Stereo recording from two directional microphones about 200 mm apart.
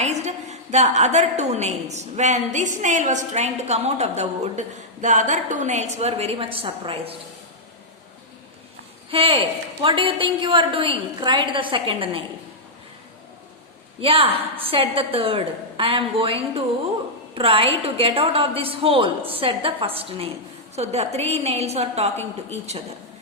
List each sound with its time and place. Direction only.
0.0 s a woman's voice: 35° right (ahead or behind)
9.0 s a woman's voice: 25° right (ahead or behind)
14.0 s a woman's voice: 25° right (ahead or behind)